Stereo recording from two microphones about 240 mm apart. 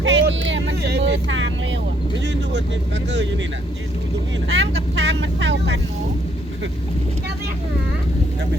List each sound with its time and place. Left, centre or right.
0.0 s vehicle: right
4.4 s speech: right